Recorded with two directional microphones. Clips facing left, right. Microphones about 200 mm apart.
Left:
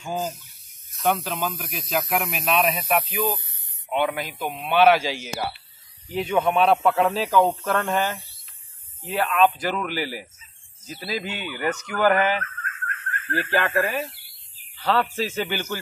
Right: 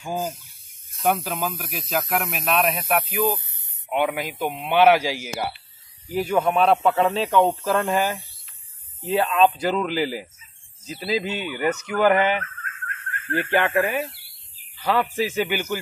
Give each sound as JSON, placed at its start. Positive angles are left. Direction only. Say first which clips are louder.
{"t": 0.0, "sound": "a man's voice", "louder": "right 1 dB", "side_deg": -10}
{"t": 2.1, "sound": "speech", "louder": "even", "side_deg": 5}
{"t": 2.5, "sound": "a man's voice", "louder": "even", "side_deg": -5}
{"t": 9.1, "sound": "a man's voice", "louder": "right 2 dB", "side_deg": -25}